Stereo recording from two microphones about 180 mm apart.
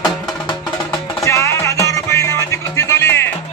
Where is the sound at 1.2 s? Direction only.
15° left (ahead or behind).